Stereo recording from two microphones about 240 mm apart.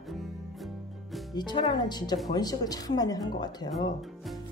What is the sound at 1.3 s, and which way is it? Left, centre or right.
Speech, centre.